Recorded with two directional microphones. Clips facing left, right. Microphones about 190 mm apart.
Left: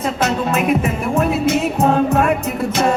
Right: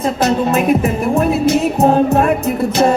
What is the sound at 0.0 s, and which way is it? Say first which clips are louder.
Music: right 4 dB; 35° right (ahead or behind).